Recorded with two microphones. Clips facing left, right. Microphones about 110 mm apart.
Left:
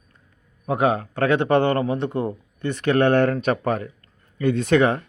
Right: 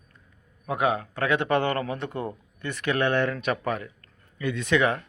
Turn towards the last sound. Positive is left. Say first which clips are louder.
# left 5 dB
turn(degrees=35)  # may be behind; listen again after turning